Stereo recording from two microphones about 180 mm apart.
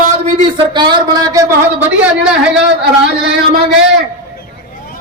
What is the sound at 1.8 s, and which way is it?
Speech, 5° right (ahead or behind).